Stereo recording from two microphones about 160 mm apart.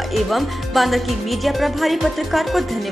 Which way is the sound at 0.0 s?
Centre (ahead or behind).